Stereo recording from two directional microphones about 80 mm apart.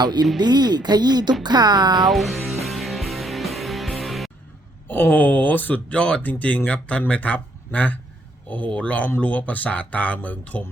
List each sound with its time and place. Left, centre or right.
0.0 s speech: right
2.0 s music: centre
4.9 s speech: left